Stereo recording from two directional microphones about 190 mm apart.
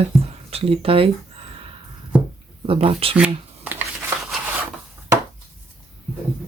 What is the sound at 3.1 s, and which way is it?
Shuffling cards, 10° right (ahead or behind).